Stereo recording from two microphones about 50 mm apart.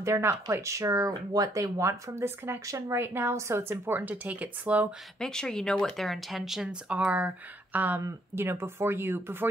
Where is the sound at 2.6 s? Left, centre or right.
Right.